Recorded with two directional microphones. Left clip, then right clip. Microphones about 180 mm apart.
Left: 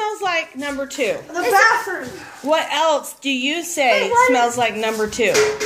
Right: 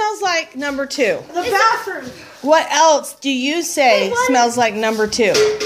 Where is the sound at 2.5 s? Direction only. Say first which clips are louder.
Right 5 dB; 40° right (ahead or behind).